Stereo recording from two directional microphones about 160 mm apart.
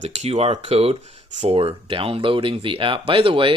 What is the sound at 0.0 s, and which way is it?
Speech, 40° right (ahead or behind).